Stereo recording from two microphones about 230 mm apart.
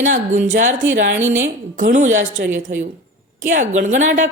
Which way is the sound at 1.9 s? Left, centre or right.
Right.